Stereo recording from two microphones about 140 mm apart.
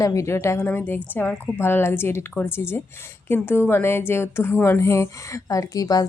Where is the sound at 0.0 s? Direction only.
20° left (ahead or behind).